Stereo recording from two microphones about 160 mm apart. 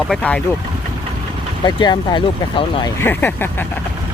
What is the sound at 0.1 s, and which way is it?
Speech, 5° left (ahead or behind).